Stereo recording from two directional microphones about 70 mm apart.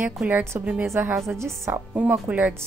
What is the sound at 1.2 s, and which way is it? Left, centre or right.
Speech, right.